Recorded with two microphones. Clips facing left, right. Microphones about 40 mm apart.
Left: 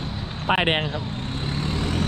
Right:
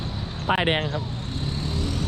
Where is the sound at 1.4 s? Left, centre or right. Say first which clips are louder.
Left 2 dB; left.